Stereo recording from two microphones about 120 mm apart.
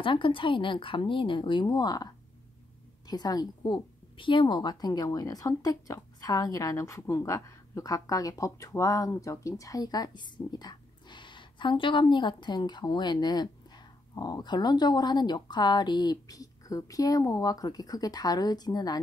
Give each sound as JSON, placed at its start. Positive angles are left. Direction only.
{"t": 0.0, "sound": "a woman's voice", "side_deg": 45}